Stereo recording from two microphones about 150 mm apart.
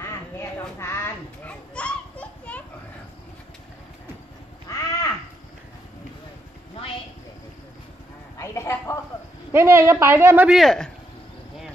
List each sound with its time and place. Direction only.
0.0 s children playing: 15° left (ahead or behind)
4.7 s crow: 20° left (ahead or behind)
8.4 s a sound: 20° left (ahead or behind)
9.5 s a man's voice: 15° right (ahead or behind)
10.5 s speech: centre (ahead or behind)